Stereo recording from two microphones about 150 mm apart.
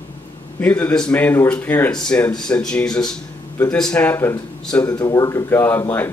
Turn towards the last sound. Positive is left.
turn(degrees=15)  # may be behind; listen again after turning